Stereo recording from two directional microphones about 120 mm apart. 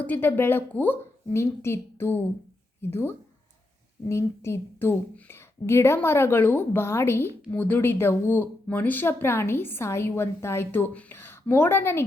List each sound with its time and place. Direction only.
0.0 s speech: 15° left (ahead or behind)